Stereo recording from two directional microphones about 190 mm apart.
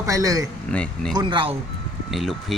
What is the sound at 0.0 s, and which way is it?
Speech, 15° right (ahead or behind).